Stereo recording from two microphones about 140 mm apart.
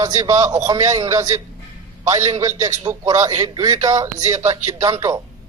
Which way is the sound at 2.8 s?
25° right (ahead or behind).